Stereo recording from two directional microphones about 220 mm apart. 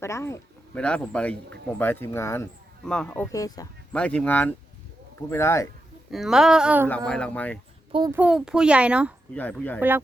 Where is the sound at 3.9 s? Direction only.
5° left (ahead or behind).